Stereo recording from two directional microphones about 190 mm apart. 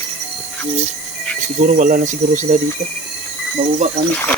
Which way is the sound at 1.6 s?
45° right (ahead or behind).